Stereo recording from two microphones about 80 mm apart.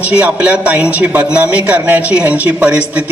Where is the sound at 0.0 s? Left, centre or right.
Centre.